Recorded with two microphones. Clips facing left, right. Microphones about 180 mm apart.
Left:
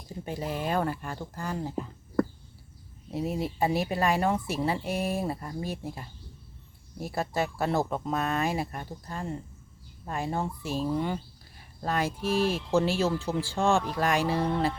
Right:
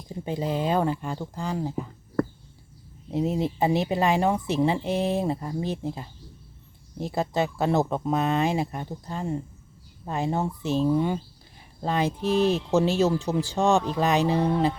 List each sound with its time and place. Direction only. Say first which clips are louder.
0.3 s speech: right 5 dB; 25° right (ahead or behind)
3.1 s speech: right 5 dB; 20° right (ahead or behind)